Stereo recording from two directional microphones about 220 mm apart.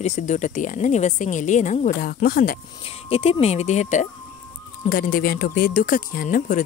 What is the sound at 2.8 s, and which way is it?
Speech, 25° left (ahead or behind).